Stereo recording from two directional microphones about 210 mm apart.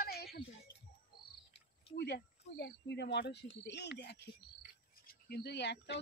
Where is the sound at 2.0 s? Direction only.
50° left (ahead or behind).